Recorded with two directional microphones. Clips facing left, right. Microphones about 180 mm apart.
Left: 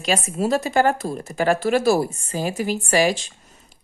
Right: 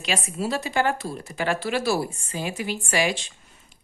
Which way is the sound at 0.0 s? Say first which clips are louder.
Left 5 dB; 45° left (ahead or behind).